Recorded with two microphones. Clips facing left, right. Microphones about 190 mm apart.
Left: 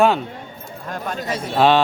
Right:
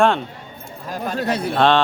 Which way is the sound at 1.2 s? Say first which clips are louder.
Right 8 dB; 60° right (ahead or behind).